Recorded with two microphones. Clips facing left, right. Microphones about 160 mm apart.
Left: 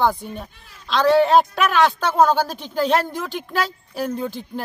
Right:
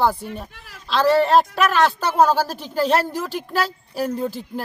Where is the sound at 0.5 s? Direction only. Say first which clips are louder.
Right 6 dB; 90° right.